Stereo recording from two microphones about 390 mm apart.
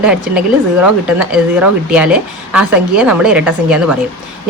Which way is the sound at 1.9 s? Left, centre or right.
Centre.